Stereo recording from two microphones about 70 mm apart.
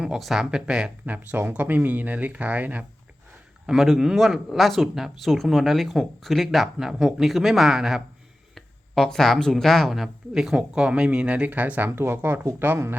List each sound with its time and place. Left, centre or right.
0.2 s speech: centre
1.0 s speech: right
3.7 s speech: centre; by 11.9 s right
11.9 s speech: right